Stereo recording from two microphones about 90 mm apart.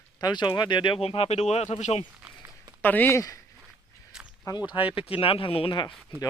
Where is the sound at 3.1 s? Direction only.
40° left (ahead or behind).